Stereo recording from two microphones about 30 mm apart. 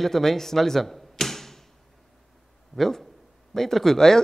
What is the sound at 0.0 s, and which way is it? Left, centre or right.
Speech, centre.